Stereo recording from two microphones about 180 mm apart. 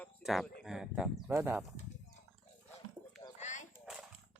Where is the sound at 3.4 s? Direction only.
40° left (ahead or behind).